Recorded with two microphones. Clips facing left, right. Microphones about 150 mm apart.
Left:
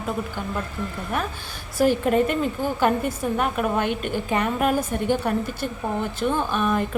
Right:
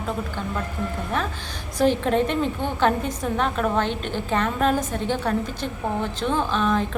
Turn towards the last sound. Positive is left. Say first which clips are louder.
# even
turn(degrees=10)  # may be behind; listen again after turning